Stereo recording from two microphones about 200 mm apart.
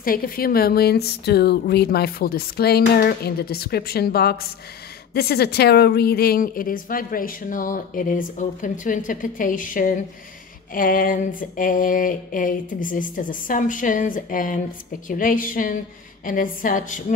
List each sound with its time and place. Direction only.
0.0 s a woman's voice: 45° left (ahead or behind)